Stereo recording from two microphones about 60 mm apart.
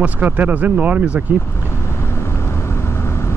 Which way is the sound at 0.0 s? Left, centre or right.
Right.